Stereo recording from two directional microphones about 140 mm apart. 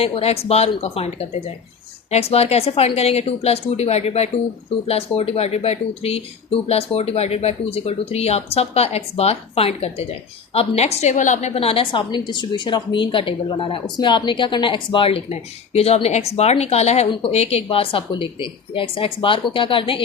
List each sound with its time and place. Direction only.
0.0 s a woman's voice: 45° left (ahead or behind)